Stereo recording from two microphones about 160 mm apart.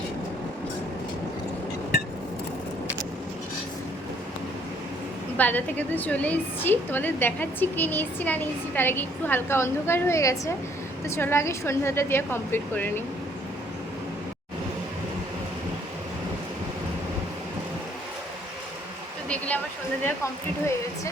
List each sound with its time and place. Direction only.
5.4 s a woman's voice: 10° left (ahead or behind)
20.1 s a woman's voice: 20° left (ahead or behind)